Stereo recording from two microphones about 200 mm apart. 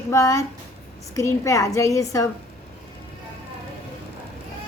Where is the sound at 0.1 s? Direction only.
15° left (ahead or behind).